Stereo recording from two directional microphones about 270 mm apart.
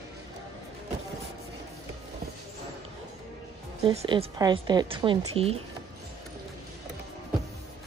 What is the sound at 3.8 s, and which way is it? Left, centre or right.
A woman's voice, centre.